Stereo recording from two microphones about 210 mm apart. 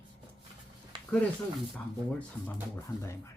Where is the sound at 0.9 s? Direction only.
25° right (ahead or behind).